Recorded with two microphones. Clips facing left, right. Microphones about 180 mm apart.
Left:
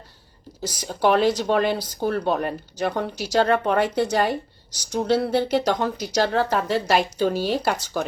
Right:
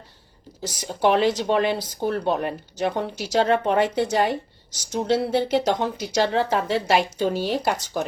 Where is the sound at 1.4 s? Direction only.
Centre (ahead or behind).